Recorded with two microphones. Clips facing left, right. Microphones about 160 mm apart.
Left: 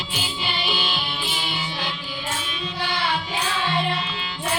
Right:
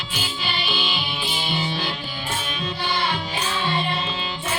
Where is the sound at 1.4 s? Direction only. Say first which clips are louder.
Right 3 dB; 30° right (ahead or behind).